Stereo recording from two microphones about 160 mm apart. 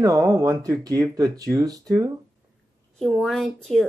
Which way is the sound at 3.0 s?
Centre (ahead or behind).